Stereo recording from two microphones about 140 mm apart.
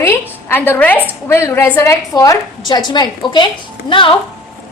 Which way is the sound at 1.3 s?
20° left (ahead or behind).